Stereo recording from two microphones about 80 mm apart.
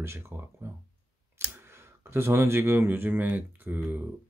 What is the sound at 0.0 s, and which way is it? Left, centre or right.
Speech, right.